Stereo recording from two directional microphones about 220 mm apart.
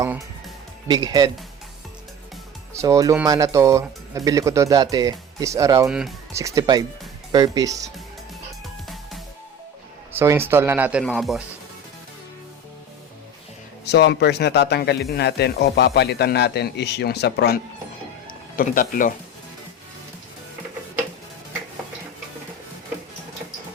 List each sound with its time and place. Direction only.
0.0 s speech: 15° right (ahead or behind)
2.7 s speech: 15° right (ahead or behind)
5.9 s speech: 5° right (ahead or behind)
6.4 s speech: 15° right (ahead or behind)
10.1 s speech: 10° right (ahead or behind)
13.8 s a man's voice: 50° left (ahead or behind)